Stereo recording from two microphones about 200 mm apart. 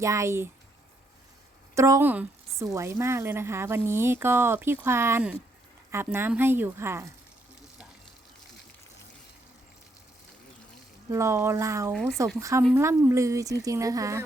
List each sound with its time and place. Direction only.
0.0 s a woman's voice: 15° right (ahead or behind)
1.7 s a woman's voice: 15° right (ahead or behind)
11.1 s a woman's voice: 15° right (ahead or behind)